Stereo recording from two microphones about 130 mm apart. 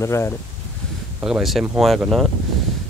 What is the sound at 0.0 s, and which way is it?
Speech, 20° left (ahead or behind).